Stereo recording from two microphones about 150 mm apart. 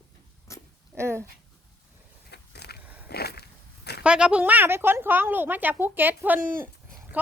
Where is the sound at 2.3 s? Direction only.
90° left.